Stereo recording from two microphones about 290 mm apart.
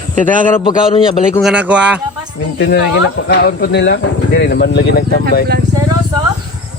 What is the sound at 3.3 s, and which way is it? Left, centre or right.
Speech, left.